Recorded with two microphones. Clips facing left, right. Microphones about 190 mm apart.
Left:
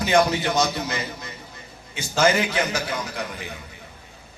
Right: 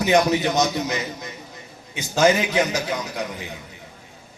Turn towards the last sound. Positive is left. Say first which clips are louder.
# right 2 dB
turn(degrees=-20)  # may be behind; listen again after turning